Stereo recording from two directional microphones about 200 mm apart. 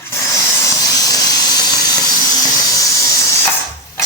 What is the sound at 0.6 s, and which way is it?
Steam, 20° left (ahead or behind).